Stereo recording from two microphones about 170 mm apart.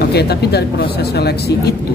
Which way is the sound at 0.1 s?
70° left (ahead or behind).